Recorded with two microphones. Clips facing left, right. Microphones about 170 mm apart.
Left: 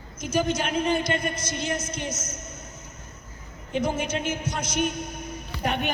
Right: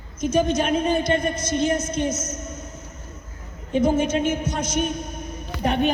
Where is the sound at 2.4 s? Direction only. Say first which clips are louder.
Right 7 dB; 55° right (ahead or behind).